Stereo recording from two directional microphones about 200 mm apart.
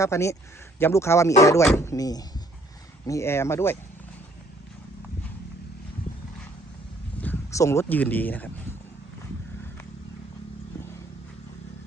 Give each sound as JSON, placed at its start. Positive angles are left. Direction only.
{"t": 0.0, "sound": "speech", "side_deg": 15}
{"t": 7.2, "sound": "speech", "side_deg": 10}